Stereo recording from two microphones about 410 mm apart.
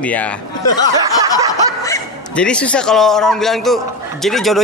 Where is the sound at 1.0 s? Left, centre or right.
Centre.